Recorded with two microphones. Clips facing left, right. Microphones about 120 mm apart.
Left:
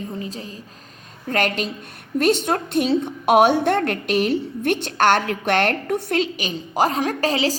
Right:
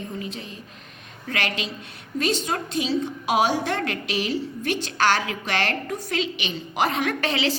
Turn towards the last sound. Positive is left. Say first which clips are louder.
# left 3 dB
turn(degrees=35)  # may be behind; listen again after turning